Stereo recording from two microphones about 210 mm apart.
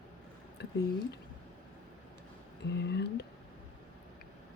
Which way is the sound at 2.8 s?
55° left (ahead or behind).